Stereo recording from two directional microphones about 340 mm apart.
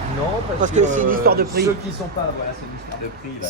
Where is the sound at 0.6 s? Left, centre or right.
Right.